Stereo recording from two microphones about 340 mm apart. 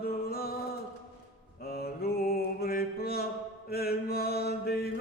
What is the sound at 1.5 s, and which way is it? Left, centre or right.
Mantra, left.